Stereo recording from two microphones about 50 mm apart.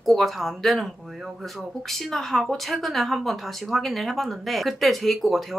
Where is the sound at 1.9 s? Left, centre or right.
Centre.